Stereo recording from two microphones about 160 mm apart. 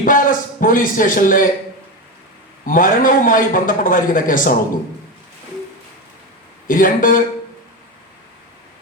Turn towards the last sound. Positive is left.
turn(degrees=55)  # may be behind; listen again after turning